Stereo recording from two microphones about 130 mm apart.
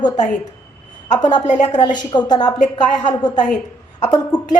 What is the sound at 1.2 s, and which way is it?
A woman's voice, 35° left (ahead or behind).